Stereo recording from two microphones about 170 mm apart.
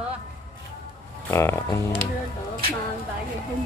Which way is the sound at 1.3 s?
15° left (ahead or behind).